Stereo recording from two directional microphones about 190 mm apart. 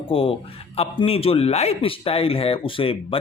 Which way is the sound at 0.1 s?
30° left (ahead or behind).